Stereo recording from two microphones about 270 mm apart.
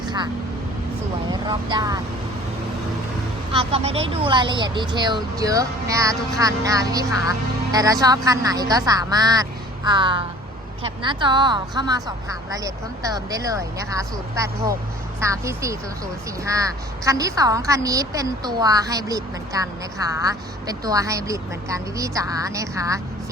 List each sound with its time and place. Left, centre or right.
1.3 s speech: centre
3.5 s a woman's voice: right